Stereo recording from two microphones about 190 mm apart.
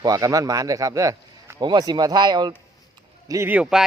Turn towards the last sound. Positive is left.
turn(degrees=-5)  # may be behind; listen again after turning